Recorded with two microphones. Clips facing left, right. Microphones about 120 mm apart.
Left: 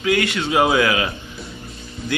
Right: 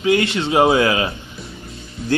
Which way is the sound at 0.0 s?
25° right (ahead or behind).